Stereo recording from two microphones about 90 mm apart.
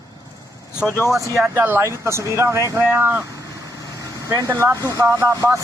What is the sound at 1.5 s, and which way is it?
Speech, 25° right (ahead or behind).